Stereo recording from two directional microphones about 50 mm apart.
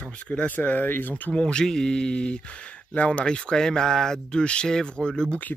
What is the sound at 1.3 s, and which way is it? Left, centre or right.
Speech, centre.